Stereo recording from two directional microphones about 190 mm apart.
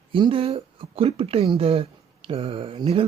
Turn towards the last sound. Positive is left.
turn(degrees=-30)  # may be behind; listen again after turning